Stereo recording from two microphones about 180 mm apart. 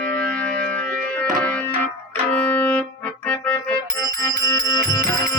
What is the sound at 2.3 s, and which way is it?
Music, 10° left (ahead or behind).